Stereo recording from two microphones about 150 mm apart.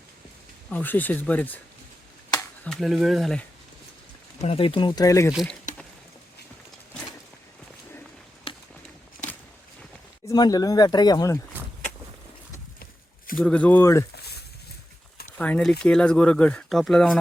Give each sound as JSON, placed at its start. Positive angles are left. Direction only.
{"t": 0.7, "sound": "speech", "side_deg": 10}
{"t": 2.6, "sound": "speech", "side_deg": 0}
{"t": 4.4, "sound": "speech", "side_deg": 40}
{"t": 5.3, "sound": "speech", "side_deg": 0}
{"t": 10.2, "sound": "speech", "side_deg": 25}
{"t": 13.3, "sound": "speech", "side_deg": 10}
{"t": 14.2, "sound": "a sound", "side_deg": 90}
{"t": 15.4, "sound": "speech", "side_deg": 10}